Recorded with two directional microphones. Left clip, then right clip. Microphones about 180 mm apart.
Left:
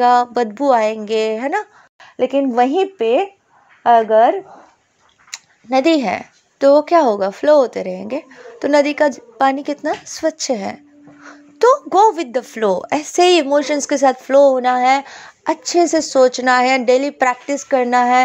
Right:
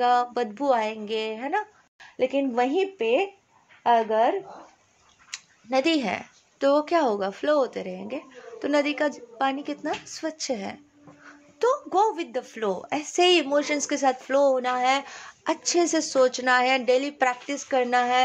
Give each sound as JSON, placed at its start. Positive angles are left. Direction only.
{"t": 0.0, "sound": "speech", "side_deg": 45}
{"t": 5.3, "sound": "speech", "side_deg": 35}